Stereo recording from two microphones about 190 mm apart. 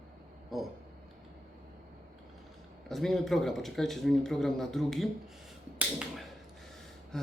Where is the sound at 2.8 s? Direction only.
Centre (ahead or behind).